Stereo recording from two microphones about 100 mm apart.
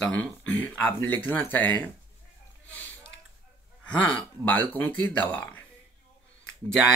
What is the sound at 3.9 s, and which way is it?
Speech, 15° left (ahead or behind).